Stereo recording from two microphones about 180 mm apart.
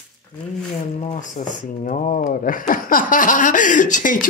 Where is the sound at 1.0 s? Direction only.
40° left (ahead or behind).